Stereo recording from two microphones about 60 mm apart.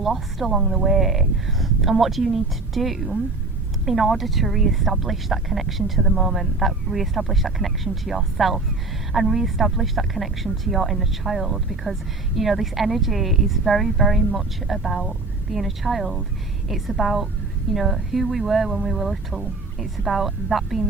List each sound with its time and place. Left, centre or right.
0.0 s speech: centre